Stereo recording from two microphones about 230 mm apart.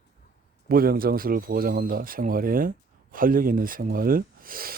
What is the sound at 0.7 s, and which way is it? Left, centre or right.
Speech, right.